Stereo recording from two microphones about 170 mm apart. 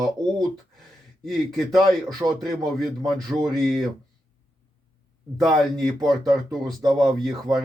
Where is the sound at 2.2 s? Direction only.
15° right (ahead or behind).